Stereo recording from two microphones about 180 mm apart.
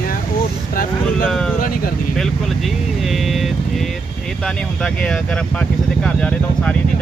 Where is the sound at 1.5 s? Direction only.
55° left (ahead or behind).